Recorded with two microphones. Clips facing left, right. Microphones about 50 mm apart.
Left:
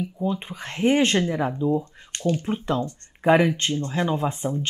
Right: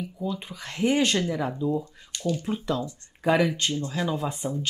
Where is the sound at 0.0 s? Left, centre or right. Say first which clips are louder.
Left 5 dB; left.